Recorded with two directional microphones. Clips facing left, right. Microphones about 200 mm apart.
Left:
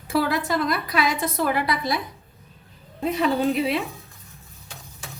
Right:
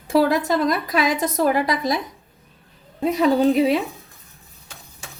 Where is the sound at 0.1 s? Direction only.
40° right (ahead or behind).